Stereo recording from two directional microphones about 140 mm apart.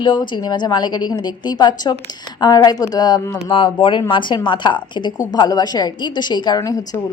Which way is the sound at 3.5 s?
40° left (ahead or behind).